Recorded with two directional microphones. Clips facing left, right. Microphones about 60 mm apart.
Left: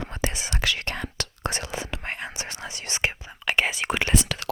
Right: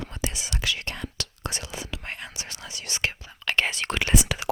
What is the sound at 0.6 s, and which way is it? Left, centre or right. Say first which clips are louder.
Whispering: left 3 dB; left.